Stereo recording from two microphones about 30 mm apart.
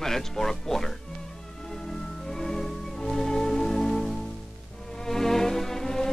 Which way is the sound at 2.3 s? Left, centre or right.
Centre.